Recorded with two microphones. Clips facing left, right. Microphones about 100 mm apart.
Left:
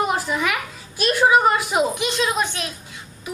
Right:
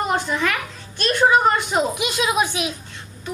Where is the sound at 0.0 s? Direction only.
5° left (ahead or behind).